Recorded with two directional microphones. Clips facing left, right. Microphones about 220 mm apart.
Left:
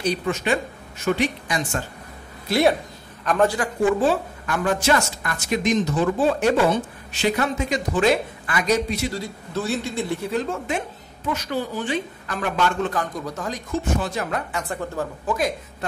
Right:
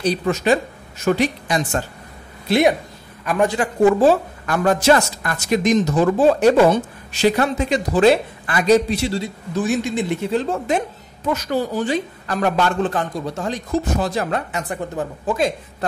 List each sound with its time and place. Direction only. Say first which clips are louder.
0.0 s speech: right 4 dB; 35° right (ahead or behind)
3.3 s a man's voice: right 1 dB; 15° right (ahead or behind)
3.8 s speech: right 6 dB; 40° right (ahead or behind)
9.5 s a woman's voice: right 5 dB; 15° right (ahead or behind)